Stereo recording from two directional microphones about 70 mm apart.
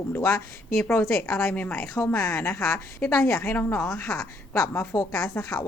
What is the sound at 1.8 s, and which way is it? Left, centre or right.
A woman's voice, left.